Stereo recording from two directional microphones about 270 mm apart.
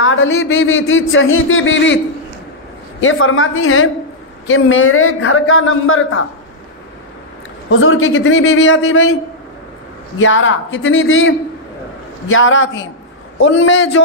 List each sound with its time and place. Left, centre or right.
0.0 s a man's voice: left
3.0 s a man's voice: left
7.8 s a man's voice: left
10.1 s a man's voice: left